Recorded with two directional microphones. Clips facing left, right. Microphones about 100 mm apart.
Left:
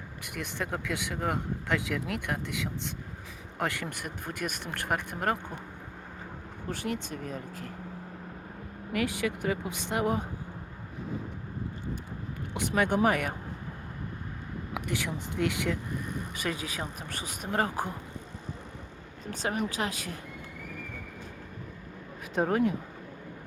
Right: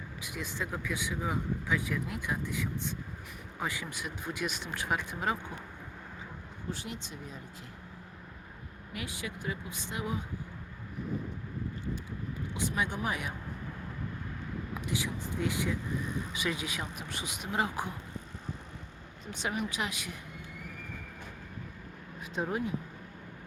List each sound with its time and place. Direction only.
0.2 s speech: 60° left (ahead or behind)
6.7 s speech: 55° left (ahead or behind)
8.9 s speech: 65° left (ahead or behind)
12.5 s speech: 65° left (ahead or behind)
14.7 s speech: 65° left (ahead or behind)
16.3 s speech: 45° left (ahead or behind)
19.2 s speech: 40° left (ahead or behind)
22.4 s speech: 70° left (ahead or behind)